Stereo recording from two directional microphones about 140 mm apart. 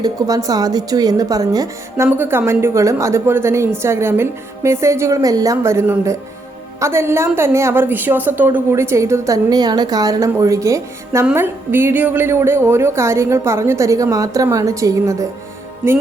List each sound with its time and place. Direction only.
0.0 s a woman's voice: 25° right (ahead or behind)
2.0 s a woman's voice: 15° right (ahead or behind)